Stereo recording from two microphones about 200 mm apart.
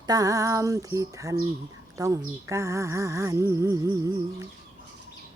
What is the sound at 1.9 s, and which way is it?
Speech, 15° right (ahead or behind).